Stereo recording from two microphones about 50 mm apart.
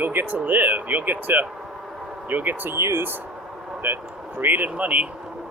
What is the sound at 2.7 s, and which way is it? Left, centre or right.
Speech, right.